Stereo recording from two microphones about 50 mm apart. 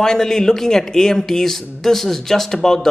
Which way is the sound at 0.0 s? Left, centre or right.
Centre.